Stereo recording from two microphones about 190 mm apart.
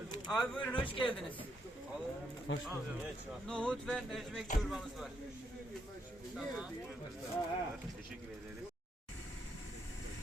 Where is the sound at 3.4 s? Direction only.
5° left (ahead or behind).